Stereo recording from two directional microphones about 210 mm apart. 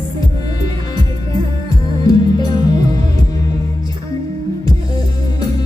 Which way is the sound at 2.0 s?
15° left (ahead or behind).